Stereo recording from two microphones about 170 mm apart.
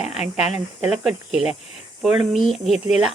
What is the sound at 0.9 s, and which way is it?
Speech, 5° right (ahead or behind).